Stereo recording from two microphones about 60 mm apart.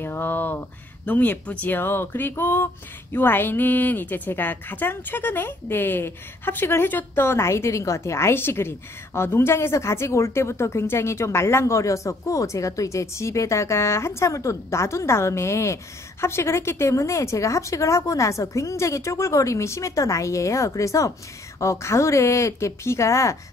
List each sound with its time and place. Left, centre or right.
0.0 s speech: left